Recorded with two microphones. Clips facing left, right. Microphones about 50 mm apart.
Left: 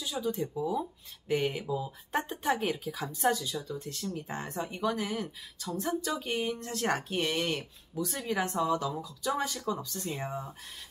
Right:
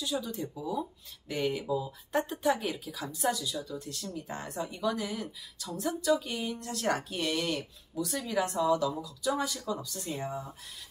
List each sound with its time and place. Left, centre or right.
0.2 s speech: left